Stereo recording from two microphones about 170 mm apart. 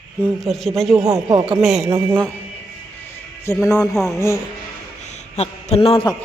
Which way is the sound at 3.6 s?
20° left (ahead or behind).